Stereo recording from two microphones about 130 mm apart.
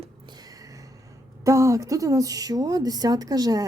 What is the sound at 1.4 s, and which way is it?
Speech, 25° right (ahead or behind).